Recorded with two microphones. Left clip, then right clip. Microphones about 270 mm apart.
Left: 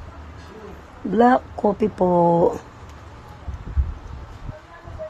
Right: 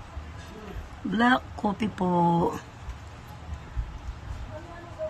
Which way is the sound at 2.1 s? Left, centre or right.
Right.